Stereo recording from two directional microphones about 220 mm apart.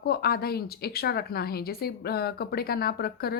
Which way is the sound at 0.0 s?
45° left (ahead or behind).